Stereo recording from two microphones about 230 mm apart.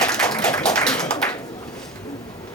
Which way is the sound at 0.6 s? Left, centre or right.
Centre.